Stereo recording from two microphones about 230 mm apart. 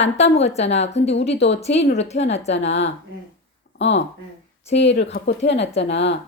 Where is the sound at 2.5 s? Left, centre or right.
Left.